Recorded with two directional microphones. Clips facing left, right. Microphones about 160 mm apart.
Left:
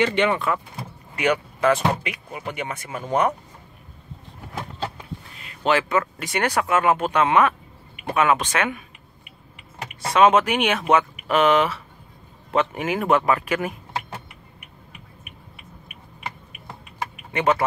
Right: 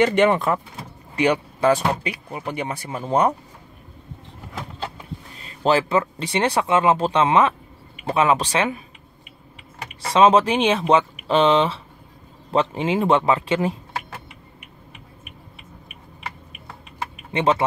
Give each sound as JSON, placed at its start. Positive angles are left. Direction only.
{"t": 0.0, "sound": "speech", "side_deg": -45}
{"t": 5.4, "sound": "speech", "side_deg": -35}
{"t": 10.1, "sound": "speech", "side_deg": -30}
{"t": 17.3, "sound": "speech", "side_deg": -25}